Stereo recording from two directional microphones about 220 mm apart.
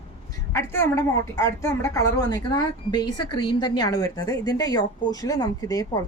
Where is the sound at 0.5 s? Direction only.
10° left (ahead or behind).